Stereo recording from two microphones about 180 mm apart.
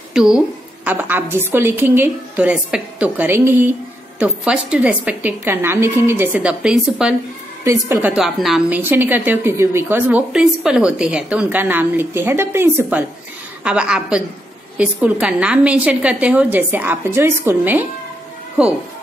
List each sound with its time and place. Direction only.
0.1 s a woman's voice: 5° right (ahead or behind)
7.6 s a woman's voice: 15° right (ahead or behind)